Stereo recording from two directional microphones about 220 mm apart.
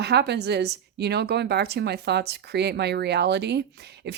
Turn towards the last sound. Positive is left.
turn(degrees=-50)  # may be behind; listen again after turning